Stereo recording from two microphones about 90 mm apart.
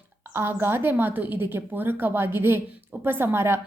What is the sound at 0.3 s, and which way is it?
A woman's voice, 25° right (ahead or behind).